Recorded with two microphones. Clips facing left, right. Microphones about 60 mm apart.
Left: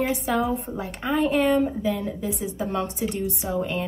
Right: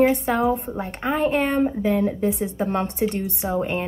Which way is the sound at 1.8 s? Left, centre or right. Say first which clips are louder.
Right 5 dB; right.